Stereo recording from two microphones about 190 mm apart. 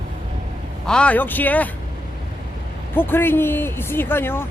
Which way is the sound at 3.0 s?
10° left (ahead or behind).